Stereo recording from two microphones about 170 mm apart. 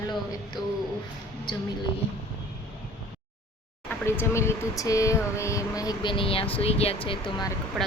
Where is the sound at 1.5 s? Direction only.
25° left (ahead or behind).